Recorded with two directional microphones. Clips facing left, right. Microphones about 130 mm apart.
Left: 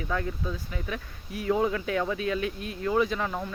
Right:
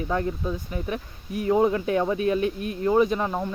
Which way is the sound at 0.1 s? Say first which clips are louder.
Right 4 dB; 30° right (ahead or behind).